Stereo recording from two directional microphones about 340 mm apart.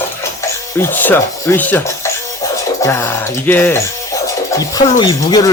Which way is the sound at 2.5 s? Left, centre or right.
Centre.